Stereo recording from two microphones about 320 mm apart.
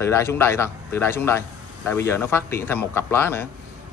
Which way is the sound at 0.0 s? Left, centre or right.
Centre.